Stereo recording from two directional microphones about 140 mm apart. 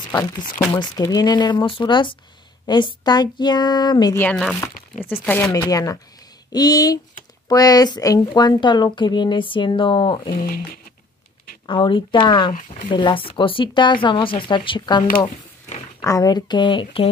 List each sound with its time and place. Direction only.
0.7 s speech: 25° left (ahead or behind)
5.0 s speech: 15° left (ahead or behind); by 10.3 s 35° left (ahead or behind)
10.3 s speech: 90° left
11.6 s speech: 35° left (ahead or behind)
15.0 s a sound: 55° left (ahead or behind)
16.0 s speech: 25° left (ahead or behind)